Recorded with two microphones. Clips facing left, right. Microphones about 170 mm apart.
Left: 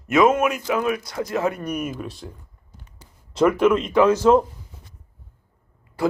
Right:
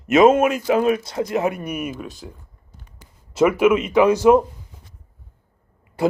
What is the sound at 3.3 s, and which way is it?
Speech, 5° right (ahead or behind).